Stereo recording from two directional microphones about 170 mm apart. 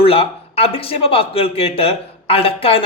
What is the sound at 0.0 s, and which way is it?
A man's voice, 35° left (ahead or behind).